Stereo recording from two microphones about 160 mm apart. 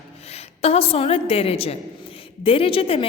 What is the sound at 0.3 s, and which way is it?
A woman's voice, 40° left (ahead or behind).